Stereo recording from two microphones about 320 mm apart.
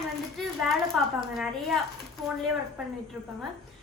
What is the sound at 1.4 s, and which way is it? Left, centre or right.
Speech, centre.